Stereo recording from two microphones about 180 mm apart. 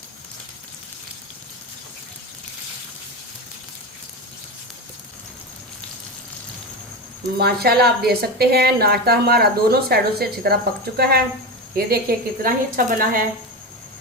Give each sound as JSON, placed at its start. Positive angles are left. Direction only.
{"t": 7.3, "sound": "a woman's voice", "side_deg": -60}